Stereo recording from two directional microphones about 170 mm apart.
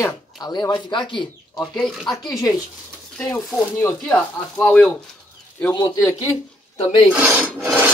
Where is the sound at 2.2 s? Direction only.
20° left (ahead or behind).